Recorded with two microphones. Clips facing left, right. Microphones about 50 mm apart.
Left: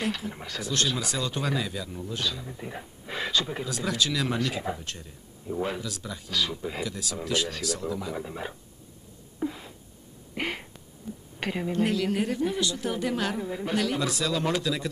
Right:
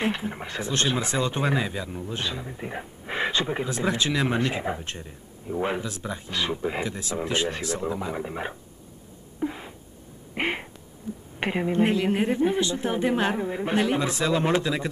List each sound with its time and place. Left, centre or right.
0.0 s speech: right
9.4 s a sound: right
11.3 s speech: right